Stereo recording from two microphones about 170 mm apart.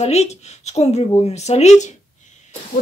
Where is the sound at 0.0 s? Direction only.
40° left (ahead or behind).